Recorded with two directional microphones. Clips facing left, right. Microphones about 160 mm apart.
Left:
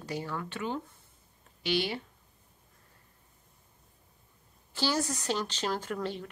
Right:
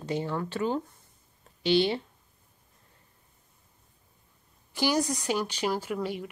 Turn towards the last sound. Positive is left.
turn(degrees=-10)  # may be behind; listen again after turning